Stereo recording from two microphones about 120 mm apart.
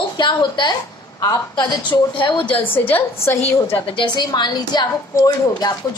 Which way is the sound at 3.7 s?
45° left (ahead or behind).